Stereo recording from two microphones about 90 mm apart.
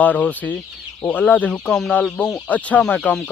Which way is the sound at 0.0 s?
15° left (ahead or behind).